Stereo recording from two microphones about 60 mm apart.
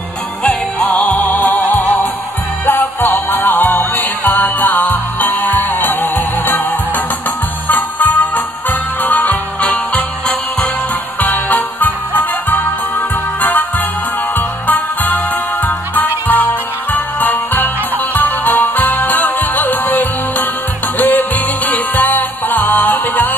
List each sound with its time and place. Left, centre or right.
0.8 s music: left
7.6 s music: left
11.1 s music: left